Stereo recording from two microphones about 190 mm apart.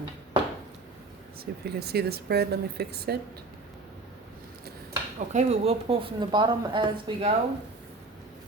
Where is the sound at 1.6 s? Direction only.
55° right (ahead or behind).